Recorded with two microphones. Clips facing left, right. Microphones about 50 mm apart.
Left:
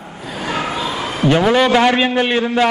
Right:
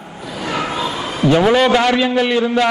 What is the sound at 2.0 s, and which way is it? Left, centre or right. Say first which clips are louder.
Speech: right 1 dB; left.